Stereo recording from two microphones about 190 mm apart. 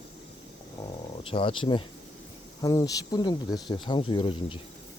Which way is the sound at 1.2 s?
30° left (ahead or behind).